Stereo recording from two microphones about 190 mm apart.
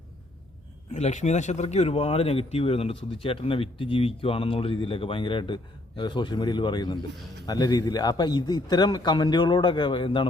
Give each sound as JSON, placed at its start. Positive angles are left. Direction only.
{"t": 0.9, "sound": "speech", "side_deg": 35}